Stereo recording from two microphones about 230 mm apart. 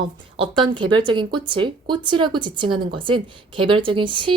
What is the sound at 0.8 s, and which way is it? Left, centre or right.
A woman's voice, right.